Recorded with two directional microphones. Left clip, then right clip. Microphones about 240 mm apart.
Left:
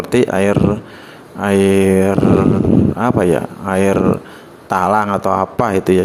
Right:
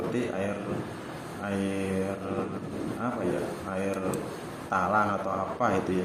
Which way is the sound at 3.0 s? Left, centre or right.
Left.